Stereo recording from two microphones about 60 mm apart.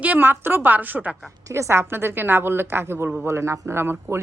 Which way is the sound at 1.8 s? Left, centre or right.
Right.